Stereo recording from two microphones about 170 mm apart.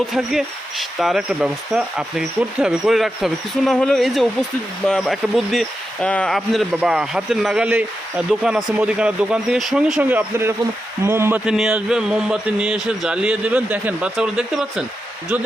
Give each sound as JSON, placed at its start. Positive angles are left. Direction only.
{"t": 0.1, "sound": "speech", "side_deg": 0}